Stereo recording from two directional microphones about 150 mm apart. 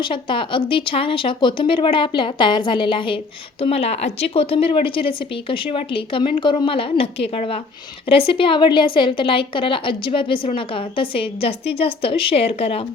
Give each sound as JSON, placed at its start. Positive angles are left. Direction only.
{"t": 0.0, "sound": "a woman's voice", "side_deg": 35}